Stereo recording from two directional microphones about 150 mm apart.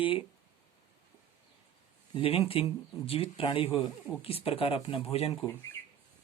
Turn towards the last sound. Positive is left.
turn(degrees=15)  # may be behind; listen again after turning